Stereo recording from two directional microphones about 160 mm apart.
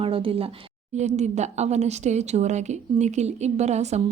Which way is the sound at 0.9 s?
45° right (ahead or behind).